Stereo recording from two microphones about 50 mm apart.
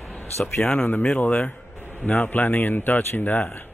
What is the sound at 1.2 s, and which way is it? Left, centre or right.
Speech, left.